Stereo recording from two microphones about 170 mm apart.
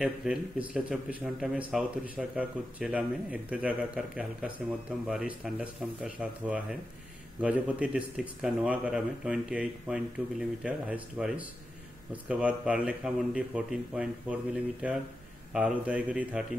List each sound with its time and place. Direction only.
0.0 s speech: 5° right (ahead or behind)